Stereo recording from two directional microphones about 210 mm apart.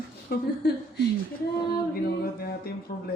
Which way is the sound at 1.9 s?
45° left (ahead or behind).